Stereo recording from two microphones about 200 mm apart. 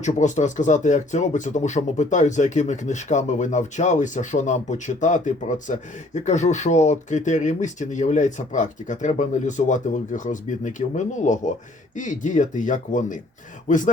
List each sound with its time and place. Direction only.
0.0 s speech: 35° left (ahead or behind)